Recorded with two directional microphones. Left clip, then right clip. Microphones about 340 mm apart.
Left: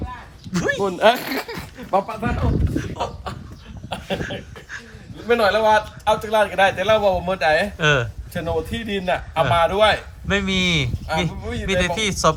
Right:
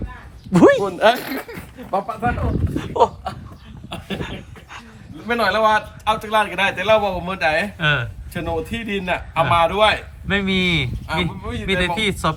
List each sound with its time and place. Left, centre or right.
0.5 s speech: centre
0.9 s speech: centre
2.9 s a sound: centre
5.2 s a man's voice: centre